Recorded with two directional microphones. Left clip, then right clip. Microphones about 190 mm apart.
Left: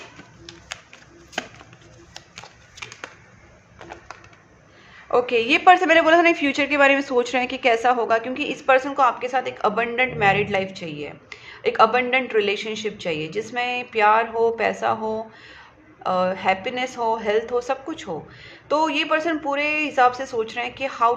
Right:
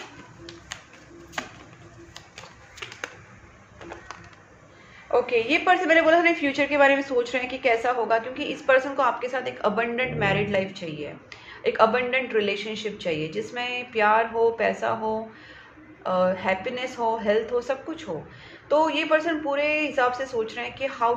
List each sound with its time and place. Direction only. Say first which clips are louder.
5.1 s a woman's voice: left 3 dB; 35° left (ahead or behind)